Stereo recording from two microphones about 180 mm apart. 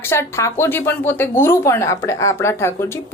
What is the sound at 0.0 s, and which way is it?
Speech, 15° left (ahead or behind).